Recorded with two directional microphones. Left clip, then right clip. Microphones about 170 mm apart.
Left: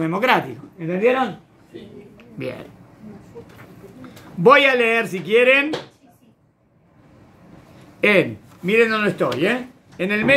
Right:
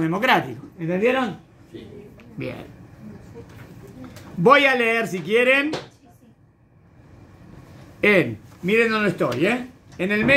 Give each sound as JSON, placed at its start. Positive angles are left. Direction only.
{"t": 0.0, "sound": "a man's voice", "side_deg": 5}
{"t": 0.7, "sound": "speech", "side_deg": -5}
{"t": 2.1, "sound": "bird", "side_deg": 5}
{"t": 4.4, "sound": "a man's voice", "side_deg": 10}
{"t": 8.0, "sound": "speech", "side_deg": 5}